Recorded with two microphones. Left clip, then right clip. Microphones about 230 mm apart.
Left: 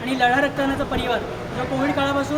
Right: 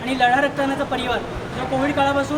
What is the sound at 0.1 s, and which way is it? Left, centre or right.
A woman's voice, centre.